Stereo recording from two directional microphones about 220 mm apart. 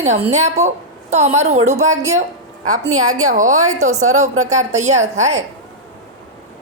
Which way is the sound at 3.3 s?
35° right (ahead or behind).